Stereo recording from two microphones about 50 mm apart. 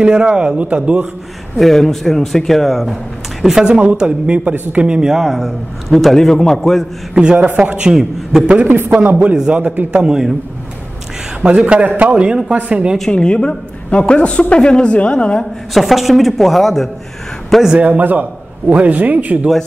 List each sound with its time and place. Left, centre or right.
0.0 s speech: right
1.6 s a man's voice: centre
5.1 s a man's voice: centre
7.5 s speech: right
7.9 s a man's voice: centre
8.9 s speech: right
9.9 s a man's voice: centre
11.4 s speech: right
13.1 s a woman's voice: centre
15.7 s a man's voice: centre
17.7 s speech: right